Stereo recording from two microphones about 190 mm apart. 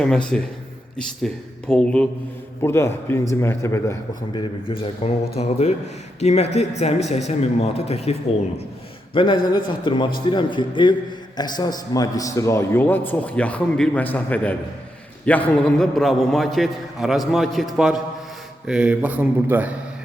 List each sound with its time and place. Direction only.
0.0 s a man's voice: 5° left (ahead or behind)
5.0 s speech: 30° left (ahead or behind)
9.1 s a man's voice: 25° left (ahead or behind); by 19.7 s 10° right (ahead or behind)